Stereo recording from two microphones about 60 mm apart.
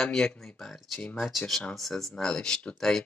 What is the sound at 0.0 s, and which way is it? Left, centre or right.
Speech, centre.